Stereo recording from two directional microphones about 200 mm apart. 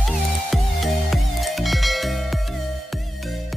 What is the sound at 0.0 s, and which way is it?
Music, centre (ahead or behind).